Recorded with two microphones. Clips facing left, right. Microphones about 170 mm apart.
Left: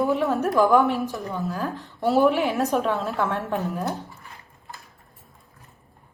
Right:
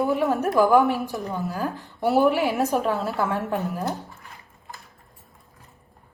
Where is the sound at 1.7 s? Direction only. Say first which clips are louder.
Even; 15° right (ahead or behind).